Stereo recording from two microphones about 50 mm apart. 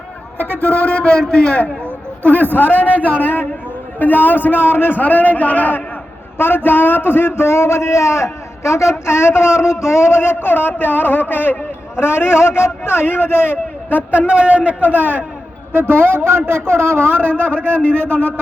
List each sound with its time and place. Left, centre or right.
0.6 s a man's voice: left
2.4 s a man's voice: left
4.9 s a man's voice: left
6.4 s a man's voice: left
14.3 s a man's voice: right
15.7 s a man's voice: right